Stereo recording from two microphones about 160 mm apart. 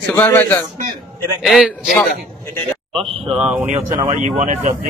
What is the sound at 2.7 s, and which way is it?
Sheep, centre (ahead or behind).